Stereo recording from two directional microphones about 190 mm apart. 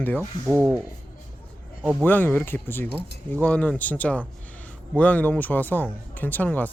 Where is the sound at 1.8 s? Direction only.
5° right (ahead or behind).